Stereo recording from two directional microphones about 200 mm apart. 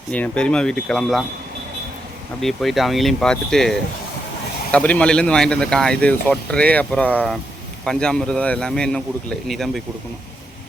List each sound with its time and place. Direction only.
0.1 s speech: 5° left (ahead or behind)
2.4 s speech: centre (ahead or behind)